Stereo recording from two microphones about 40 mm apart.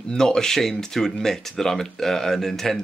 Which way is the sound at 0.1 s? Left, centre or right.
Centre.